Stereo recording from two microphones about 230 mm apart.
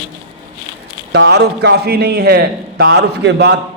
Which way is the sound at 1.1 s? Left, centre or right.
Right.